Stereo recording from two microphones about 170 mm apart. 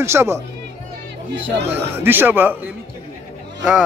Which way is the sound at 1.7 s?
10° right (ahead or behind).